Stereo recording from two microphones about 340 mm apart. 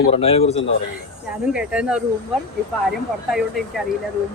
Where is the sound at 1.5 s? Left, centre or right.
Centre.